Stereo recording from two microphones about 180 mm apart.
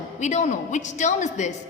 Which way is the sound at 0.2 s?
40° left (ahead or behind).